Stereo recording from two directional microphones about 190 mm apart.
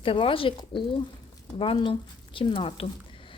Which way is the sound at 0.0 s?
30° left (ahead or behind).